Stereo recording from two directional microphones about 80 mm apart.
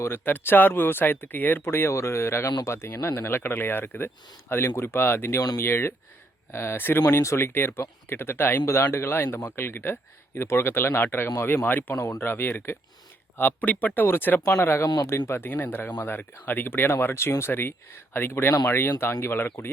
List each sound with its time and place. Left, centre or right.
0.0 s speech: left